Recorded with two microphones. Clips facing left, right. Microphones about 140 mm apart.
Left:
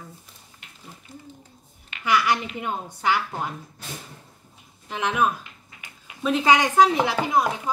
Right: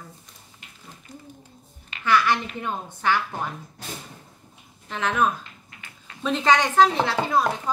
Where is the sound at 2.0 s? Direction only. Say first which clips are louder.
Right 1 dB; 10° left (ahead or behind).